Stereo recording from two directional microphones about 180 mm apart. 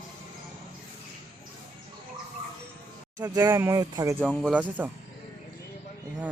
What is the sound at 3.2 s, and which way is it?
Speech, 20° right (ahead or behind).